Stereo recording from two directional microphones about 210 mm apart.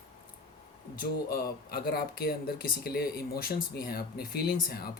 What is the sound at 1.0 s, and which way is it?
Speech, 45° left (ahead or behind).